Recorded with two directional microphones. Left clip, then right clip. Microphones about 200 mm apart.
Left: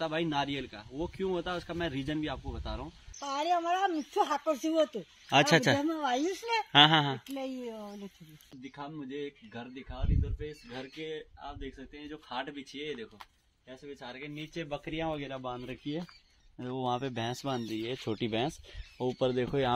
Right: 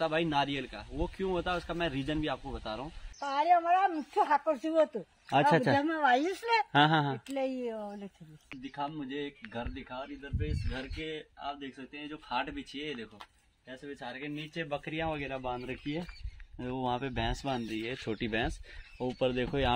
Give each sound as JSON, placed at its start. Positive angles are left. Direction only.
{"t": 0.0, "sound": "speech", "side_deg": 0}
{"t": 3.2, "sound": "speech", "side_deg": 50}
{"t": 5.3, "sound": "speech", "side_deg": 5}
{"t": 5.8, "sound": "speech", "side_deg": 20}
{"t": 6.0, "sound": "a woman's voice", "side_deg": -10}
{"t": 7.5, "sound": "speech", "side_deg": -20}
{"t": 7.8, "sound": "a woman's voice", "side_deg": -5}